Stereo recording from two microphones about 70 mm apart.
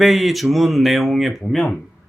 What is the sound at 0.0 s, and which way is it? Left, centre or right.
Speech, centre.